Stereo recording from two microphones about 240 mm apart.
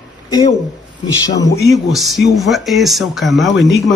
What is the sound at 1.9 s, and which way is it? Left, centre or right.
Speech, centre.